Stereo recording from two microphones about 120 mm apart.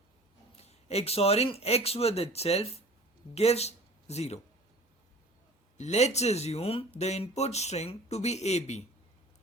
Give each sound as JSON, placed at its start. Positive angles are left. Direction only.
{"t": 0.5, "sound": "speech", "side_deg": 60}
{"t": 5.7, "sound": "speech", "side_deg": 70}